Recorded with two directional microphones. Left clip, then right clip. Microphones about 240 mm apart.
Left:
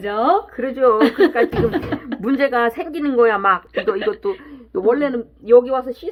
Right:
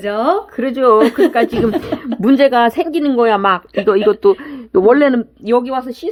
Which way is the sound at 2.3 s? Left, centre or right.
Right.